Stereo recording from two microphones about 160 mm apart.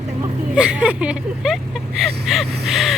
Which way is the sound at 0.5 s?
5° right (ahead or behind).